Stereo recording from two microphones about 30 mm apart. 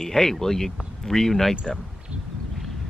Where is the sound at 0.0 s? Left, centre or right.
Centre.